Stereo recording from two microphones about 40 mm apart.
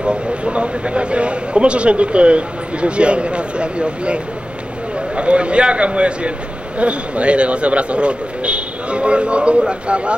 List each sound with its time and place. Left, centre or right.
0.0 s a man's voice: right